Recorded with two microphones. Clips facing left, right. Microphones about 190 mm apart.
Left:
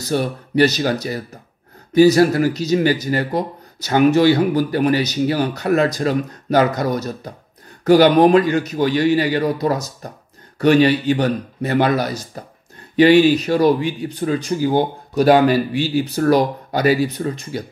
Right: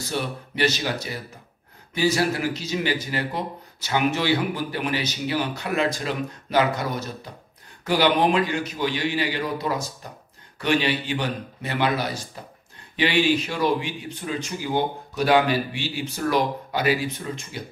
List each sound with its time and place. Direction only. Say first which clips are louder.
0.0 s a man's voice: left 8 dB; 40° left (ahead or behind)